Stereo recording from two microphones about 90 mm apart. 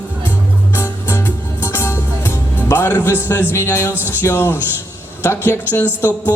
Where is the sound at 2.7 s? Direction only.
25° left (ahead or behind).